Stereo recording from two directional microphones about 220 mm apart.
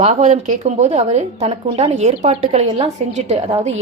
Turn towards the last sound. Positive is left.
turn(degrees=-30)  # may be behind; listen again after turning